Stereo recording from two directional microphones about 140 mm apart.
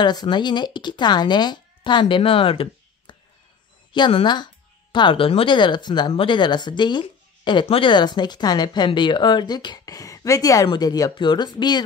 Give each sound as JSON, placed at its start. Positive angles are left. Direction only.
{"t": 0.0, "sound": "speech", "side_deg": 30}